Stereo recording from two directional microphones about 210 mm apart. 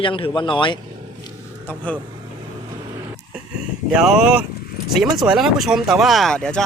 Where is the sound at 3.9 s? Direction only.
5° right (ahead or behind).